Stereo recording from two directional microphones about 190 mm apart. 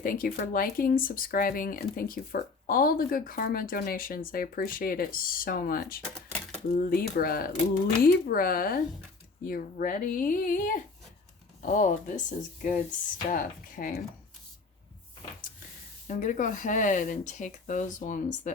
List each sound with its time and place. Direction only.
0.0 s speech: 45° left (ahead or behind)
16.0 s speech: 40° left (ahead or behind)